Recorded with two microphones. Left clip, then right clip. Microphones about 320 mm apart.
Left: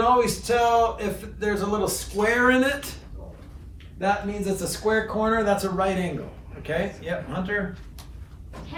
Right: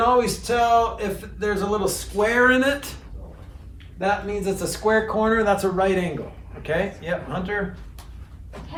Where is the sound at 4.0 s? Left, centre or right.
Centre.